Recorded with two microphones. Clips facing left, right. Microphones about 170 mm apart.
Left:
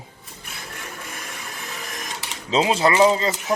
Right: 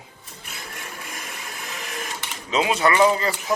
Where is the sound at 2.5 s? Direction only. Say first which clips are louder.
Left 2 dB; 30° left (ahead or behind).